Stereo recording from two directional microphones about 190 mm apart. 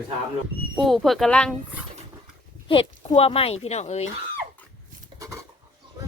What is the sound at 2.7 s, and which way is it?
A woman's voice, 30° left (ahead or behind).